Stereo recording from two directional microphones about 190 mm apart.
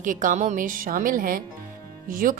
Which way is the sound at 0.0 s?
45° right (ahead or behind).